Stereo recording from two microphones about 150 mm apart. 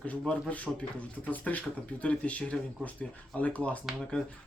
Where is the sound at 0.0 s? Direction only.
5° left (ahead or behind).